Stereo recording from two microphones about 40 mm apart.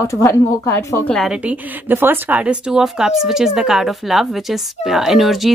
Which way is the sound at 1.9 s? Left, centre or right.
Right.